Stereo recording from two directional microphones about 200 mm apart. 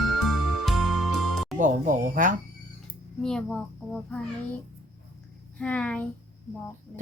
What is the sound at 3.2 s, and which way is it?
A child's voice, 5° left (ahead or behind).